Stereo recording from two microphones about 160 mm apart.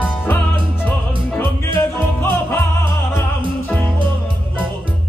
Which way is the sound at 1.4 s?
15° left (ahead or behind).